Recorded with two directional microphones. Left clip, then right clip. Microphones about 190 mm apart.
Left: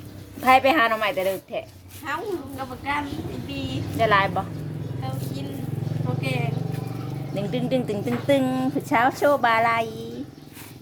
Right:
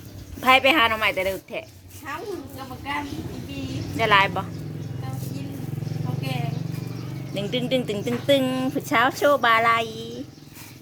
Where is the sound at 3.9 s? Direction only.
15° right (ahead or behind).